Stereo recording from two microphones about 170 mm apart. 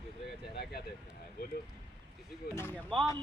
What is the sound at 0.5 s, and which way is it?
Vehicle, 65° left (ahead or behind).